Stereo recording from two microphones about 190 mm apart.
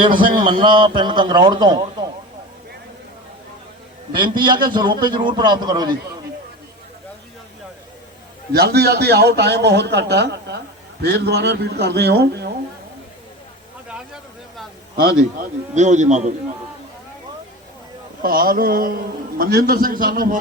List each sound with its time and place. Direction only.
0.1 s a man's voice: 45° right (ahead or behind)
0.3 s a man's voice: 25° right (ahead or behind)
4.7 s a man's voice: 25° right (ahead or behind)
8.5 s a man's voice: 55° right (ahead or behind)
14.9 s a man's voice: 45° right (ahead or behind)
18.2 s a man's voice: 50° right (ahead or behind)